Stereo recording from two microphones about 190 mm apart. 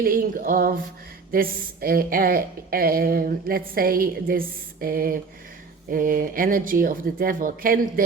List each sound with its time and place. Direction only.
0.0 s a woman's voice: 50° right (ahead or behind)